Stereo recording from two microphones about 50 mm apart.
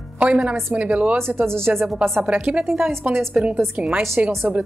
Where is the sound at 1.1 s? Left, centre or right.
Right.